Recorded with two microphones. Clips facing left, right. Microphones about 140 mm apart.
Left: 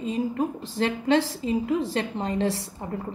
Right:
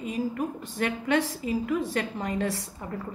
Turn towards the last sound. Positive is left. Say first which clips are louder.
# left 3 dB
turn(degrees=25)  # may be behind; listen again after turning